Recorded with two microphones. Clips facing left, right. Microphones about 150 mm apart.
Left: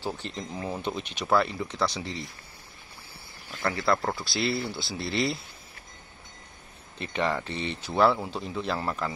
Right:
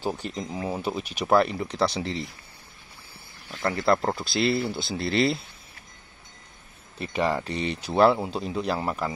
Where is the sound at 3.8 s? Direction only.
25° right (ahead or behind).